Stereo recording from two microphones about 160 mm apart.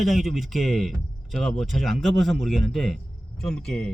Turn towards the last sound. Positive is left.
turn(degrees=5)  # may be behind; listen again after turning